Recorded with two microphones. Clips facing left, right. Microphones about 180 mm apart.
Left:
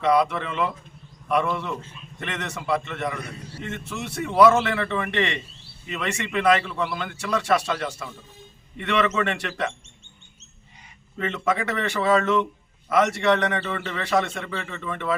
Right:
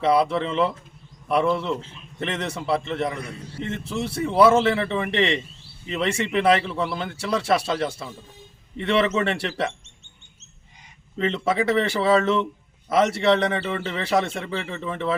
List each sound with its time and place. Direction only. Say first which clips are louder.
0.0 s a man's voice: right 1 dB; 30° right (ahead or behind)
11.2 s a man's voice: right 3 dB; 30° right (ahead or behind)